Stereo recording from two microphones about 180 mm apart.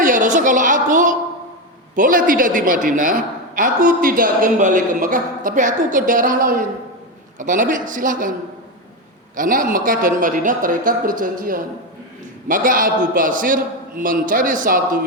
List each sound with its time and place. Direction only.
0.0 s a sound: 45° right (ahead or behind)
2.0 s a woman's voice: 50° right (ahead or behind)
9.3 s a woman's voice: 50° right (ahead or behind)